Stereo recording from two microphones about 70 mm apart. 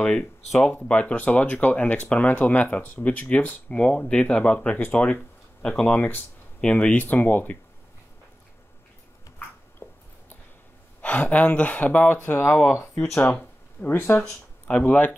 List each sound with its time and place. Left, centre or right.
0.6 s speech: centre
5.9 s speech: left
6.6 s speech: centre
9.8 s a sound: left
11.0 s speech: left
13.1 s speech: left
14.7 s speech: centre